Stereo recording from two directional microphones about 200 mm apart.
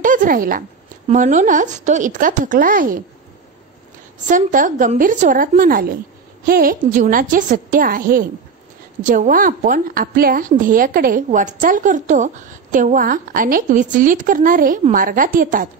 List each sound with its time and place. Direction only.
0.0 s speech: 40° right (ahead or behind)
4.3 s a woman's voice: 40° right (ahead or behind)